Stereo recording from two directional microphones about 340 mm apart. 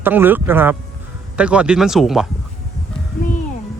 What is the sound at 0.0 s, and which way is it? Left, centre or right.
Speech, centre.